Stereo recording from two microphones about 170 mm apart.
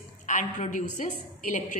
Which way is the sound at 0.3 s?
45° left (ahead or behind).